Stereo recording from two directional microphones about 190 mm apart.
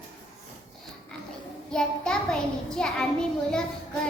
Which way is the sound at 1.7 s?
5° left (ahead or behind).